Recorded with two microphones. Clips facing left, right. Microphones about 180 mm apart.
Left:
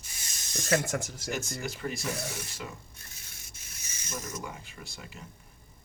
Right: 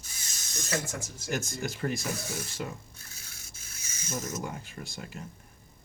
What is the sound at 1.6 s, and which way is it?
Speech, 45° right (ahead or behind).